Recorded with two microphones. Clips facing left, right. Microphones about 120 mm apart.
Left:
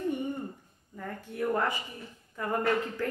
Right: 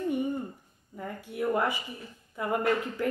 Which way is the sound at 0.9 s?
15° right (ahead or behind).